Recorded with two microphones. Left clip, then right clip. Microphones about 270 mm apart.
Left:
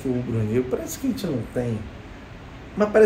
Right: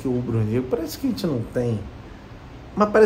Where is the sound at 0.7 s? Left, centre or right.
Centre.